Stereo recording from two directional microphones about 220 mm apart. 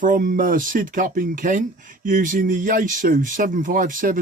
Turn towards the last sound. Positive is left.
turn(degrees=-40)  # may be behind; listen again after turning